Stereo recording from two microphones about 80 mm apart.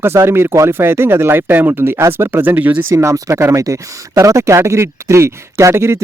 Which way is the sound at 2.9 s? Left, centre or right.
Right.